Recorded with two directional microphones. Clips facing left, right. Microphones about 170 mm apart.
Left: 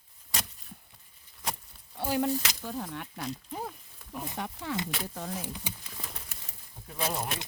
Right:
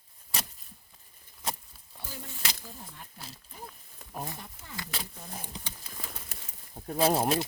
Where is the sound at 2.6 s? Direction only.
80° left.